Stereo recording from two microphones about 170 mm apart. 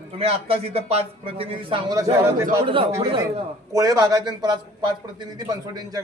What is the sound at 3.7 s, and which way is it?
A man's voice, 20° right (ahead or behind).